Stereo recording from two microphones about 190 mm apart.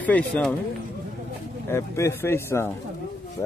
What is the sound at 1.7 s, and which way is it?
Speech, 15° left (ahead or behind).